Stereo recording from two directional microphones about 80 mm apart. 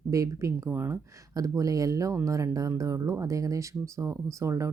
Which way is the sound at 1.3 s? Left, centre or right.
Right.